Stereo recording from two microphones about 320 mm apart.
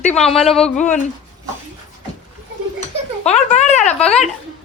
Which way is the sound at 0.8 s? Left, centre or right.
Left.